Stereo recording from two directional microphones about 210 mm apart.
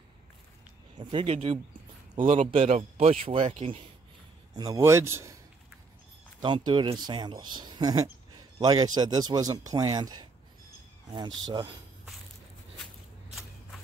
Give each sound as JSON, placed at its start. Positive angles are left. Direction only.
{"t": 0.9, "sound": "speech", "side_deg": -25}
{"t": 4.6, "sound": "a man's voice", "side_deg": -15}
{"t": 6.4, "sound": "speech", "side_deg": -20}
{"t": 11.2, "sound": "speech", "side_deg": -65}
{"t": 13.3, "sound": "a sound", "side_deg": 0}